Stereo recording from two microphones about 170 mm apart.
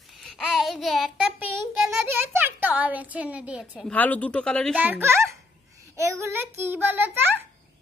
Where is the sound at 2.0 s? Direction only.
10° right (ahead or behind).